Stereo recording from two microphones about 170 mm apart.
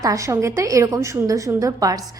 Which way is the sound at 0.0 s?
20° right (ahead or behind).